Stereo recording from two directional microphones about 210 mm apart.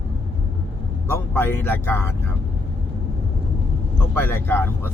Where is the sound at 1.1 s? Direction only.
10° left (ahead or behind).